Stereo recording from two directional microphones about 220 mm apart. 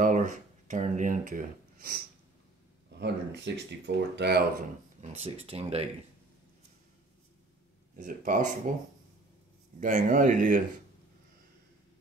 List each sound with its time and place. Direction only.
0.0 s speech: 35° right (ahead or behind)
3.0 s speech: 50° right (ahead or behind)
5.0 s speech: 30° right (ahead or behind)
7.9 s speech: 40° right (ahead or behind)